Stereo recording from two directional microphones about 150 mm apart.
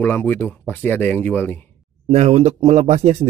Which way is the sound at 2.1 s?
45° right (ahead or behind).